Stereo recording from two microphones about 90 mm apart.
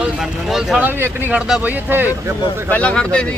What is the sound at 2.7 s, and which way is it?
Speech, 15° left (ahead or behind).